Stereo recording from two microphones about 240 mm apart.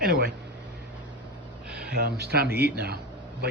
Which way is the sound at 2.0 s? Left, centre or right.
Right.